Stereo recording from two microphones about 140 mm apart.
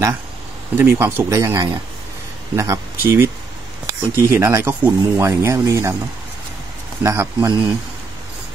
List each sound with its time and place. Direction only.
0.7 s speech: 15° right (ahead or behind)
7.0 s speech: 15° right (ahead or behind)